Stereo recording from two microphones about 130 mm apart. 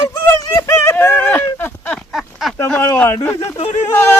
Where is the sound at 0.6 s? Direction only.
20° left (ahead or behind).